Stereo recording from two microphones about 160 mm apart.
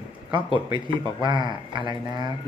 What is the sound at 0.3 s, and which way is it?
Speech, 30° right (ahead or behind).